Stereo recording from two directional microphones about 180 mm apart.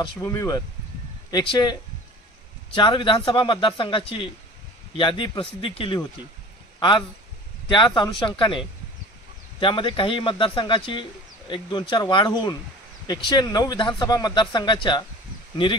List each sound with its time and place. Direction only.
0.0 s speech: 20° left (ahead or behind)
7.6 s speech: 25° left (ahead or behind)